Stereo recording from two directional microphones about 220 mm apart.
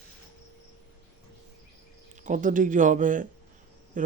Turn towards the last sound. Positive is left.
turn(degrees=-35)  # may be behind; listen again after turning